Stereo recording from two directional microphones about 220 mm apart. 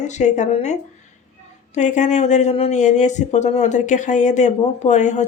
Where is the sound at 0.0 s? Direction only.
30° left (ahead or behind).